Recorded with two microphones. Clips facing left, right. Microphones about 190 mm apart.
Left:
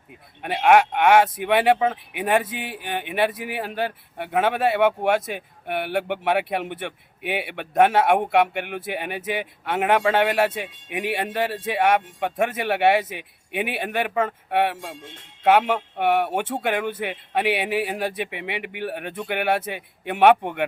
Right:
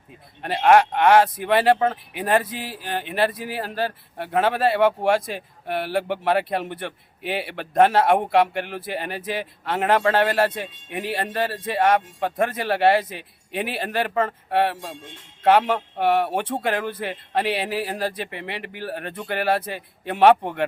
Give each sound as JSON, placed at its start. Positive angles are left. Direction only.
{"t": 0.4, "sound": "speech", "side_deg": 0}
{"t": 2.6, "sound": "speech", "side_deg": 60}
{"t": 3.1, "sound": "speech", "side_deg": 5}